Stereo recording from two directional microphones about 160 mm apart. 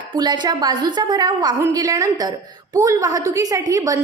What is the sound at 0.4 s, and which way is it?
A woman's voice, 25° right (ahead or behind).